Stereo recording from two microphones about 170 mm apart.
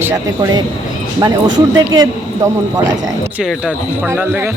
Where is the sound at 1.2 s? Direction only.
25° right (ahead or behind).